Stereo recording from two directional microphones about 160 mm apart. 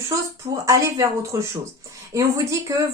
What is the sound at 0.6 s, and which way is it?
Speech, 20° right (ahead or behind).